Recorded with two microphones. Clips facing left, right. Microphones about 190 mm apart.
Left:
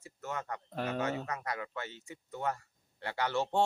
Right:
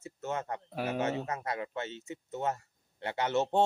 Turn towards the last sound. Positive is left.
turn(degrees=-20)  # may be behind; listen again after turning